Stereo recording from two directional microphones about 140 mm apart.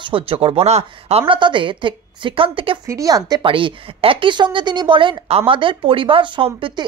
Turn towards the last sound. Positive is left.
turn(degrees=-40)  # may be behind; listen again after turning